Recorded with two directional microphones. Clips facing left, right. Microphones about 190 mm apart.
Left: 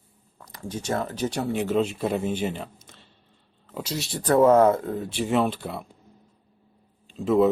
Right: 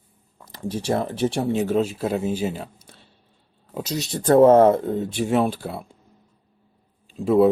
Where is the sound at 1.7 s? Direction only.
5° right (ahead or behind).